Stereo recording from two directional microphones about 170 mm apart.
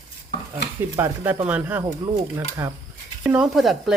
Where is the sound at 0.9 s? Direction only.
15° right (ahead or behind).